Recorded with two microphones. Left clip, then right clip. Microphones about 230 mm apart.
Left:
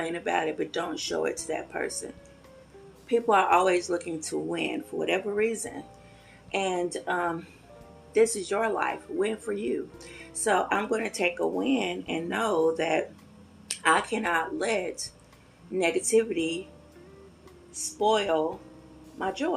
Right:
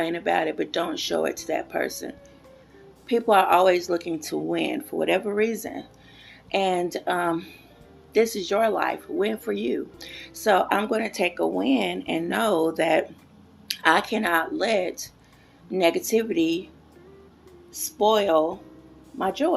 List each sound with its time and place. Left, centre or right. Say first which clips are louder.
0.0 s speech: right 4 dB; right
3.1 s speech: right 3 dB; right
17.8 s speech: right 4 dB; right